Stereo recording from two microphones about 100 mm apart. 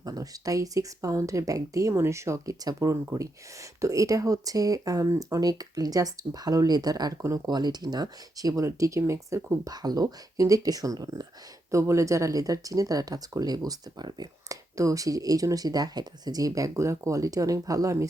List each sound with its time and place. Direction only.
0.0 s speech: 40° right (ahead or behind)